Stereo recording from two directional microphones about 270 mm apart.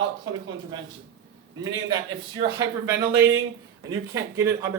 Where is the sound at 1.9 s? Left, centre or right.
Centre.